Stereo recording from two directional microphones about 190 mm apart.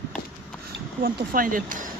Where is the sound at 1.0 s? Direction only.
50° right (ahead or behind).